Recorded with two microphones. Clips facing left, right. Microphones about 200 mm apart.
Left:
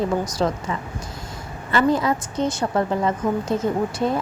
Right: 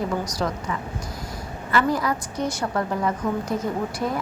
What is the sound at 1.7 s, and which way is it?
A woman's voice, 25° left (ahead or behind).